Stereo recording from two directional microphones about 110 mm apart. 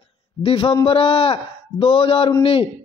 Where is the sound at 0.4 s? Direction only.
55° left (ahead or behind).